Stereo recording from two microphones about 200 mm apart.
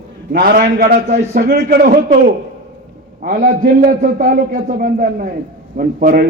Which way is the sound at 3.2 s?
50° right (ahead or behind).